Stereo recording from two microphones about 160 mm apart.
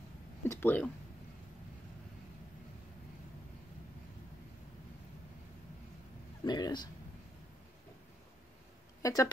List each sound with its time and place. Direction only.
0.5 s speech: 15° left (ahead or behind)
6.4 s speech: 25° left (ahead or behind)
9.0 s speech: 20° left (ahead or behind)